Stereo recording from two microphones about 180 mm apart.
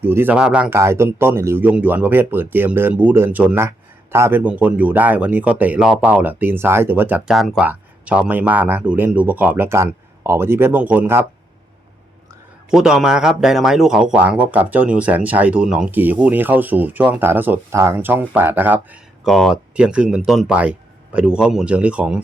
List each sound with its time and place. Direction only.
0.0 s speech: 10° right (ahead or behind)
12.7 s speech: centre (ahead or behind)